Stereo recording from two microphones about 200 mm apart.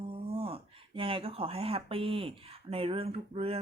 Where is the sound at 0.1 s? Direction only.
30° right (ahead or behind).